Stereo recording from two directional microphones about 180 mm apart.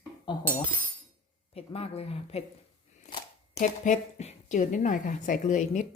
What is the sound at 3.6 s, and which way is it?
Speech, 45° left (ahead or behind).